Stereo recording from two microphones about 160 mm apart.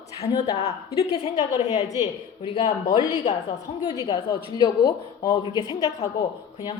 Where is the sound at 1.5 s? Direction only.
25° left (ahead or behind).